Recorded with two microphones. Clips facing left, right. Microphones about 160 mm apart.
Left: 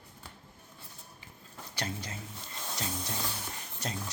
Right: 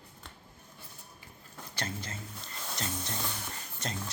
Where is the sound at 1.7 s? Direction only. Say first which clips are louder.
Left 1 dB; 15° left (ahead or behind).